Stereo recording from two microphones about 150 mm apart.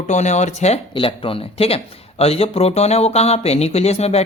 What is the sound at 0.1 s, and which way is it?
Speech, 50° left (ahead or behind).